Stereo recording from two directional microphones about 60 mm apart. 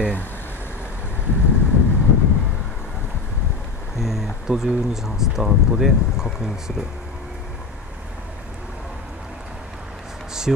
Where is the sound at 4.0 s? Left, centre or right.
Centre.